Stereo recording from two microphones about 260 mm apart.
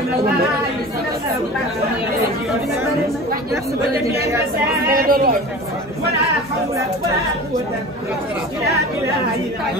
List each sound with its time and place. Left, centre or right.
4.0 s a woman's voice: centre
4.8 s a man's voice: right